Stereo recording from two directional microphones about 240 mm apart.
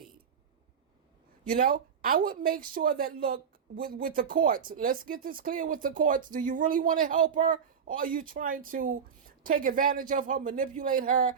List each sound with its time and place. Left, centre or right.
1.5 s speech: right